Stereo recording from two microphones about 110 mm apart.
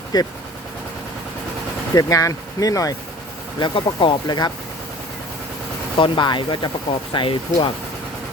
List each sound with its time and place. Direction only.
0.1 s speech: 40° left (ahead or behind)
2.0 s speech: 30° left (ahead or behind)
3.6 s speech: 50° left (ahead or behind)
6.0 s speech: 45° left (ahead or behind)